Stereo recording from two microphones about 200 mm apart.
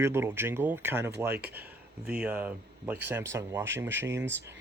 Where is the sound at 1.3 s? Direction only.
55° right (ahead or behind).